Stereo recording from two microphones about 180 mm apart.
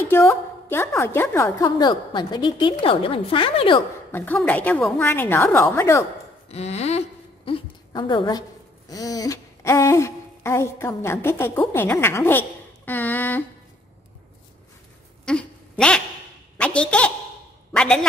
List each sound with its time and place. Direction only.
0.1 s a woman's voice: 15° left (ahead or behind); by 3.8 s 30° left (ahead or behind)
4.1 s a woman's voice: 10° left (ahead or behind)
6.5 s a woman's voice: 35° left (ahead or behind); by 13.4 s 10° left (ahead or behind)
15.2 s a sound: 5° left (ahead or behind)
16.5 s a woman's voice: 5° left (ahead or behind)